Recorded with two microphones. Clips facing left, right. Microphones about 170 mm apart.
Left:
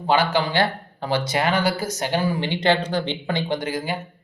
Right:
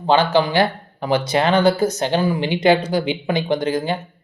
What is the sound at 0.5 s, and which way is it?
Speech, 15° right (ahead or behind).